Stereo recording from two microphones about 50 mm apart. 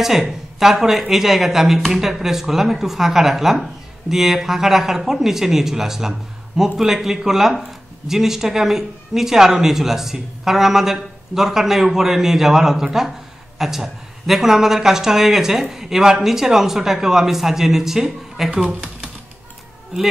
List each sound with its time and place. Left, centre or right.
0.0 s a woman's voice: centre
18.5 s speech: right